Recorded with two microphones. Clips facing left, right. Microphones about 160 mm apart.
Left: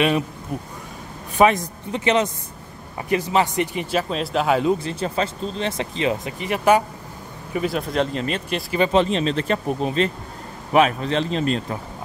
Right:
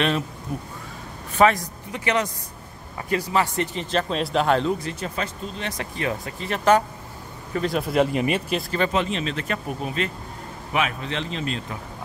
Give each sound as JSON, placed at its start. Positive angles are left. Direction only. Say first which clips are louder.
{"t": 1.4, "sound": "a man's voice", "louder": "left 2 dB", "side_deg": 25}
{"t": 4.6, "sound": "speech", "louder": "left 4 dB", "side_deg": 30}
{"t": 7.9, "sound": "speech", "louder": "right 2 dB", "side_deg": -10}
{"t": 8.9, "sound": "speech", "louder": "left 6 dB", "side_deg": 30}